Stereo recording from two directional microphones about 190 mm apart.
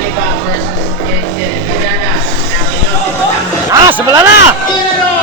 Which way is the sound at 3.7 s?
20° right (ahead or behind).